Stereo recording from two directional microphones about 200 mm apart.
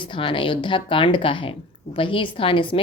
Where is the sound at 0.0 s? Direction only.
25° left (ahead or behind).